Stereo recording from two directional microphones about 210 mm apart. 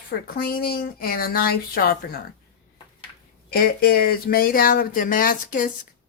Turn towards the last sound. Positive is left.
turn(degrees=40)  # may be behind; listen again after turning